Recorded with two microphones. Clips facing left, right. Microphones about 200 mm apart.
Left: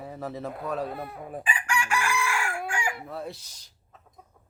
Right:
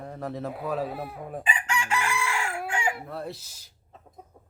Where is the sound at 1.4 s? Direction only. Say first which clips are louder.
Left 1 dB; 20° right (ahead or behind).